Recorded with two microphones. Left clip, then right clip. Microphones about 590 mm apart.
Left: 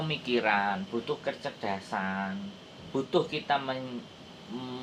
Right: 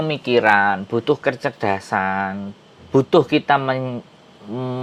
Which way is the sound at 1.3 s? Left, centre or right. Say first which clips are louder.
Right 13 dB; right.